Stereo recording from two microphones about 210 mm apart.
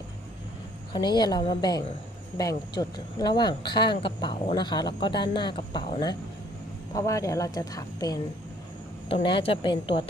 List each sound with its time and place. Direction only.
0.9 s a woman's voice: 20° left (ahead or behind)